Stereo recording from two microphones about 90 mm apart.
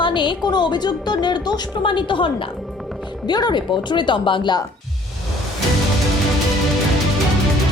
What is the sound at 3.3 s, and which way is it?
Speech, 55° left (ahead or behind).